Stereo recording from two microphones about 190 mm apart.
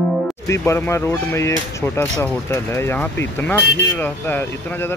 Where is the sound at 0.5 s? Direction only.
15° left (ahead or behind).